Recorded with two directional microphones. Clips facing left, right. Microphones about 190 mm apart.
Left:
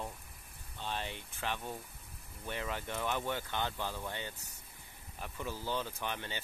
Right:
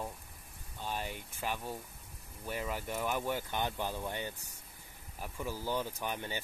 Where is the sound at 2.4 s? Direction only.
5° right (ahead or behind).